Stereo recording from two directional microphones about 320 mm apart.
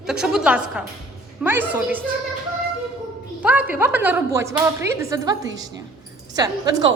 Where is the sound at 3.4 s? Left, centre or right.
Centre.